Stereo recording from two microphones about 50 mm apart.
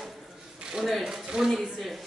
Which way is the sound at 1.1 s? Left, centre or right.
Centre.